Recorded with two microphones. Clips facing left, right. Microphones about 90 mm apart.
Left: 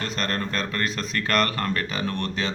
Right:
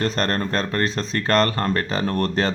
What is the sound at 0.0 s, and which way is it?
Speech, 40° right (ahead or behind).